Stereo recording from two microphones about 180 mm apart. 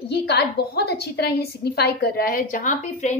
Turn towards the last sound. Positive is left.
turn(degrees=45)  # may be behind; listen again after turning